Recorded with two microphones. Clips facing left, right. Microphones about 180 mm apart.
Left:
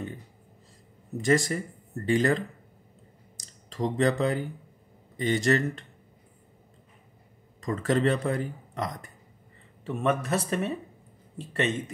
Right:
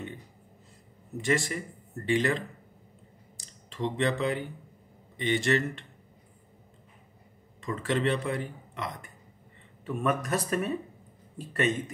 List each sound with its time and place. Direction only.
1.2 s speech: 40° left (ahead or behind)
3.3 s a sound: 40° left (ahead or behind)
5.1 s speech: 40° left (ahead or behind)
7.6 s speech: 40° left (ahead or behind)
9.8 s speech: 25° left (ahead or behind)